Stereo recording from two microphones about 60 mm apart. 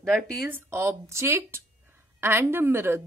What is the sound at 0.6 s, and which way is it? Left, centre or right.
Speech, right.